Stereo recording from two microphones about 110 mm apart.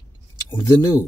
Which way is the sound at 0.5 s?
30° left (ahead or behind).